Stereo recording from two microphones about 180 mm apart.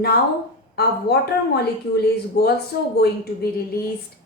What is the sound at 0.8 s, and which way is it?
A woman's voice, 65° left (ahead or behind).